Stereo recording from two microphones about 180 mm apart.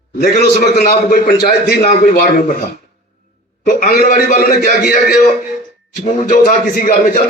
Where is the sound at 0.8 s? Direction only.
50° left (ahead or behind).